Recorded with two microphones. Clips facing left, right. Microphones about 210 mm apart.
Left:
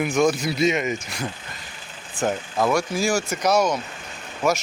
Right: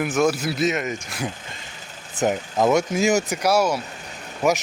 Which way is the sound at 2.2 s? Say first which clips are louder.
Right 2 dB; 20° right (ahead or behind).